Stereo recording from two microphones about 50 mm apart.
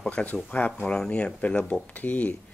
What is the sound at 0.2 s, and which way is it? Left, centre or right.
Speech, left.